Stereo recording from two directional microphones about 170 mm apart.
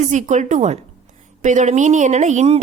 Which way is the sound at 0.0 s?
45° right (ahead or behind).